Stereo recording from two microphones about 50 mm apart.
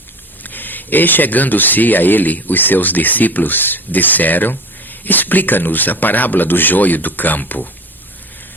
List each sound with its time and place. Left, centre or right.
0.4 s speech: left